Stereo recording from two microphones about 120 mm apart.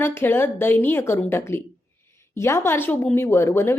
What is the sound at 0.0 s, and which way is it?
A woman's voice, 20° left (ahead or behind).